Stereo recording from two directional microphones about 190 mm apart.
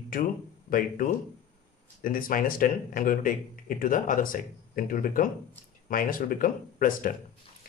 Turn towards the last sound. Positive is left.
turn(degrees=45)  # may be behind; listen again after turning